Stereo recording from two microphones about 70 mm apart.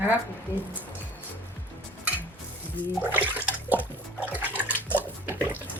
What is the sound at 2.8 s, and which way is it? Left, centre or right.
Music, left.